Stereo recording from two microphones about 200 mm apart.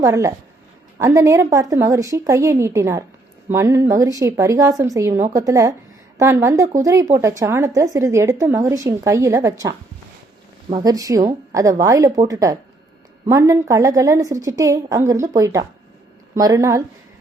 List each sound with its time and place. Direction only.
0.0 s speech: 15° right (ahead or behind)
10.8 s speech: 20° right (ahead or behind)